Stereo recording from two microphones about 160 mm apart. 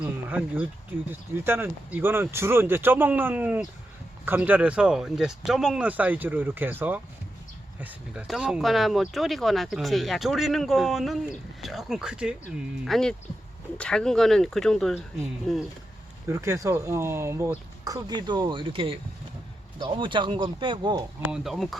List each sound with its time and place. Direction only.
0.0 s speech: 10° right (ahead or behind)
16.3 s speech: 15° right (ahead or behind)
21.2 s speech: 5° right (ahead or behind)